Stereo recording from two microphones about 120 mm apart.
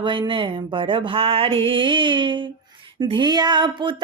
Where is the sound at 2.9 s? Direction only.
40° right (ahead or behind).